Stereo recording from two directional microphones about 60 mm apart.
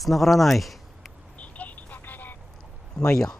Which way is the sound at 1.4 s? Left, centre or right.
Left.